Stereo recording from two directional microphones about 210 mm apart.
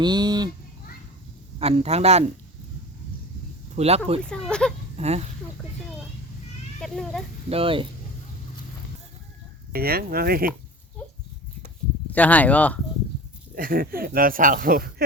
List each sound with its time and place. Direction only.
0.0 s a man's voice: 20° right (ahead or behind)
1.5 s a man's voice: 30° right (ahead or behind)
3.8 s a man's voice: 30° right (ahead or behind)
4.3 s speech: 5° left (ahead or behind)
4.9 s speech: 30° right (ahead or behind)
6.8 s speech: centre (ahead or behind)
7.5 s a man's voice: 25° right (ahead or behind)
9.7 s speech: 45° right (ahead or behind)
12.1 s speech: 5° left (ahead or behind)
13.6 s speech: 45° right (ahead or behind)